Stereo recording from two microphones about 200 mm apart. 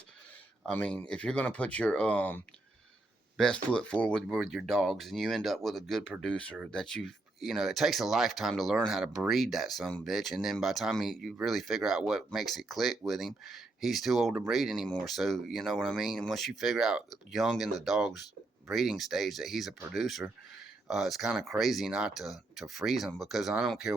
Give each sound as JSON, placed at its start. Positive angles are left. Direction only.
{"t": 0.6, "sound": "speech", "side_deg": 5}